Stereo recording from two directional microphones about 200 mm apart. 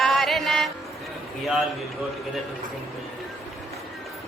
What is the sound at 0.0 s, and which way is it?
Music, centre (ahead or behind).